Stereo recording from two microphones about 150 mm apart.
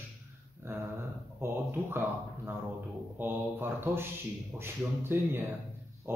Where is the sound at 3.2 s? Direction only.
15° right (ahead or behind).